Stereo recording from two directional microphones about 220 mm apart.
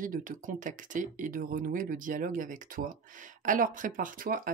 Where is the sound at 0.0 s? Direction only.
35° right (ahead or behind).